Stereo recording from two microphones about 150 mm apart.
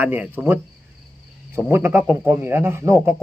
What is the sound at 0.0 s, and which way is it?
Speech, 10° right (ahead or behind).